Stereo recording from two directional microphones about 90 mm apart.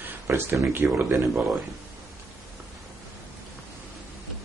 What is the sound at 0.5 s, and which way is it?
Speech, 35° right (ahead or behind).